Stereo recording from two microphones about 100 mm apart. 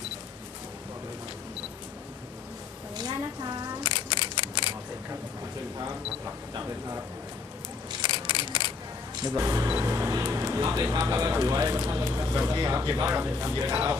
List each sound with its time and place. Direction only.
2.9 s a sound: 40° right (ahead or behind)
3.8 s single-lens reflex camera: 55° left (ahead or behind)
8.0 s mechanisms: 50° left (ahead or behind)
9.1 s speech: 45° right (ahead or behind)
9.4 s speech: 30° right (ahead or behind)
9.8 s music: 30° right (ahead or behind)
10.9 s speech: 30° right (ahead or behind)
13.1 s speech: 20° right (ahead or behind)
13.7 s speech: 10° right (ahead or behind)